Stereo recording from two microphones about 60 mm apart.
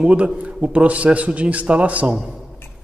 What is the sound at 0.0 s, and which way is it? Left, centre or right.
A man's voice, right.